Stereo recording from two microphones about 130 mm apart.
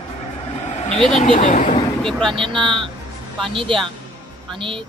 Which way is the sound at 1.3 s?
80° left.